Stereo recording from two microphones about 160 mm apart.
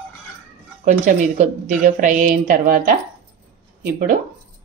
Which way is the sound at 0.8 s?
50° right (ahead or behind).